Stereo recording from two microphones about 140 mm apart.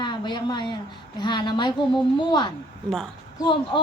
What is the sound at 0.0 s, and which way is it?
A woman's voice, 35° left (ahead or behind).